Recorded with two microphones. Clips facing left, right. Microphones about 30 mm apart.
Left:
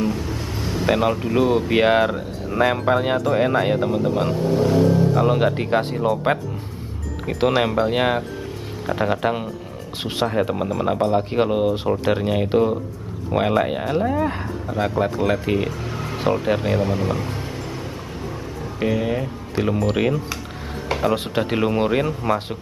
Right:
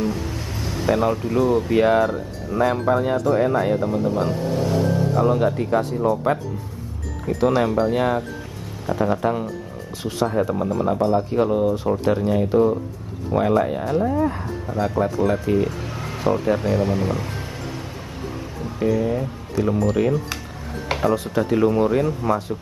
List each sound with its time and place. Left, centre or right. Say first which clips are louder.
0.0 s vehicle: left 1 dB; centre
0.8 s speech: even; left
4.4 s speech: left 4 dB; centre
5.0 s speech: left 1 dB; left
16.4 s speech: even; left
16.8 s speech: even; centre
18.8 s speech: right 1 dB; left